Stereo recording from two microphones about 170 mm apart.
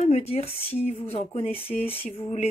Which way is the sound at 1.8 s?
45° left (ahead or behind).